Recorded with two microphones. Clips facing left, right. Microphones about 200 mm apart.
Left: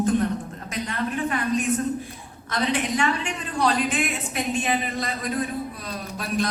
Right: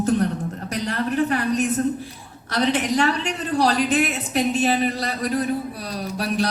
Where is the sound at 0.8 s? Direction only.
40° right (ahead or behind).